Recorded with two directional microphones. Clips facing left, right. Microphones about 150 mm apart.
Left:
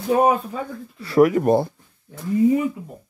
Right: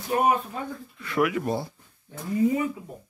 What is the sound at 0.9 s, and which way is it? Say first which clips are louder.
Speech: left 9 dB; 35° left (ahead or behind).